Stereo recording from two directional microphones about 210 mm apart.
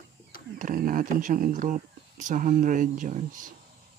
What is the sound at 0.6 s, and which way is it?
Speech, 40° right (ahead or behind).